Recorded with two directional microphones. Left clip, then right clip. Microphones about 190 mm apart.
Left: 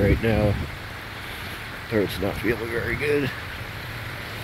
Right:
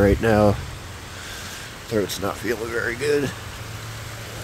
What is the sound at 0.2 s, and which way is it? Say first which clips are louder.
Speech: right 5 dB; 40° right (ahead or behind).